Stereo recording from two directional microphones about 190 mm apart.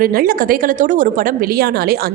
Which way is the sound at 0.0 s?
50° right (ahead or behind).